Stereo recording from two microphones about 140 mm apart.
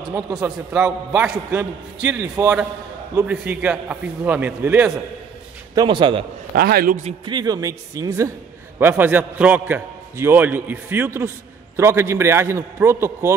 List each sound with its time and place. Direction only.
0.3 s a man's voice: 5° right (ahead or behind)
5.8 s a man's voice: 35° right (ahead or behind)
6.5 s a man's voice: 90° right
7.2 s a man's voice: 30° right (ahead or behind)